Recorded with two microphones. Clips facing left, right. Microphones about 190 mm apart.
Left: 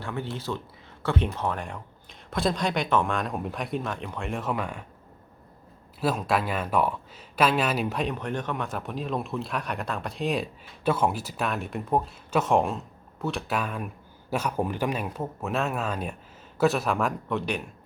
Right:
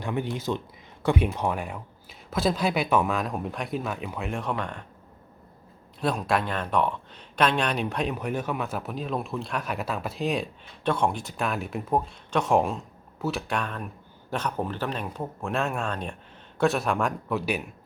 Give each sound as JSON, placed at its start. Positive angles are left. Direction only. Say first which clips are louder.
{"t": 0.0, "sound": "speech", "louder": "right 4 dB", "side_deg": -15}
{"t": 6.0, "sound": "speech", "louder": "even", "side_deg": 0}